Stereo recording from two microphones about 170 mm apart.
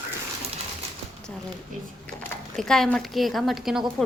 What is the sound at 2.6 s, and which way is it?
Speech, 5° left (ahead or behind).